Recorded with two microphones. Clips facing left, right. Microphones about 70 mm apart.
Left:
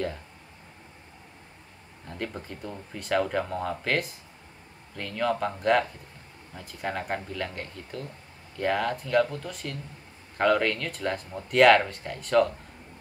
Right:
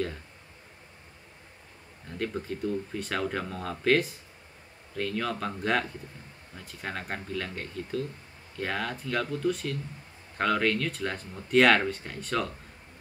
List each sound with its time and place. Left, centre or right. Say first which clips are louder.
2.0 s speech: right 3 dB; centre